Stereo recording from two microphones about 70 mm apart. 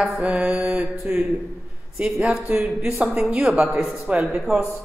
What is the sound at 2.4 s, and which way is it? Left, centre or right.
A woman's voice, centre.